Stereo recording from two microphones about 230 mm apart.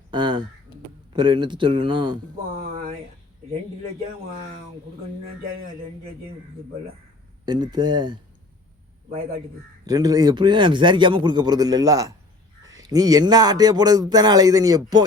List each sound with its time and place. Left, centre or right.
0.1 s a man's voice: centre
7.4 s a man's voice: centre
9.8 s a man's voice: centre